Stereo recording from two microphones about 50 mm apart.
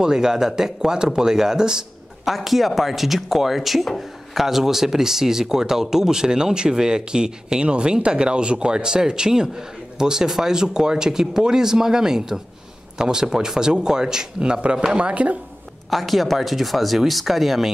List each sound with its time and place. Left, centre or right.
0.0 s speech: centre
15.9 s speech: centre